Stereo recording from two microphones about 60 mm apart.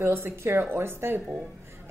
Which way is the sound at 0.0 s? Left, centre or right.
Right.